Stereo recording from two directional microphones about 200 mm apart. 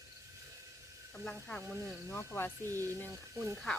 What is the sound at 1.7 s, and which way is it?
Speech, 10° right (ahead or behind).